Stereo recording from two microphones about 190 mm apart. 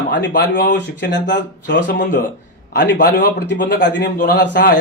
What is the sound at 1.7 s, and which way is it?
Speech, 50° left (ahead or behind).